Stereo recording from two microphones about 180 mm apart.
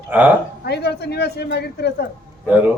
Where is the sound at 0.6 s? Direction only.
65° left (ahead or behind).